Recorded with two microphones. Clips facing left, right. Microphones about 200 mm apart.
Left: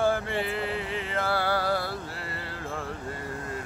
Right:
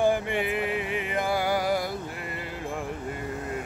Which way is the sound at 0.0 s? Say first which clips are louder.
Right 2 dB; 15° right (ahead or behind).